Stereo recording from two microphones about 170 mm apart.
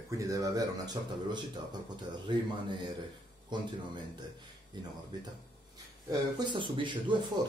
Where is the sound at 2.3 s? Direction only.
30° right (ahead or behind).